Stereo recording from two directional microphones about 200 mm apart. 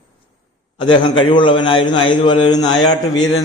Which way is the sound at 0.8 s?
25° left (ahead or behind).